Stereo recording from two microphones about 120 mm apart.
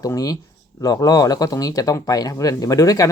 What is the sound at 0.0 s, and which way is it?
Speech, 30° left (ahead or behind).